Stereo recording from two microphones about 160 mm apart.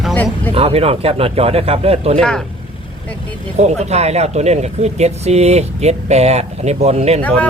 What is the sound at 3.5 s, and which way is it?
Speech, 45° right (ahead or behind).